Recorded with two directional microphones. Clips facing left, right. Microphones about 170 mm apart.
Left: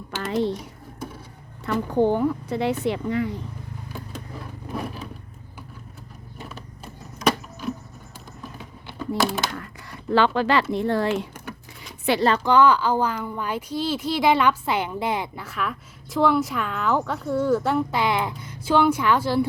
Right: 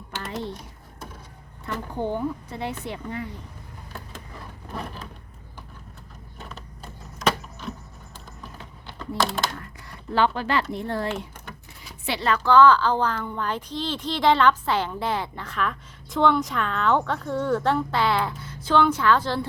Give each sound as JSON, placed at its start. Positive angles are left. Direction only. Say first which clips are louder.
{"t": 1.6, "sound": "speech", "louder": "left 8 dB", "side_deg": 90}
{"t": 4.7, "sound": "a sound", "louder": "left 4 dB", "side_deg": 5}
{"t": 6.4, "sound": "a sound", "louder": "left 2 dB", "side_deg": 0}
{"t": 8.5, "sound": "typing", "louder": "left 7 dB", "side_deg": 10}
{"t": 10.1, "sound": "speech", "louder": "left 3 dB", "side_deg": 90}
{"t": 12.0, "sound": "speech", "louder": "left 7 dB", "side_deg": 45}
{"t": 12.4, "sound": "speech", "louder": "right 1 dB", "side_deg": 15}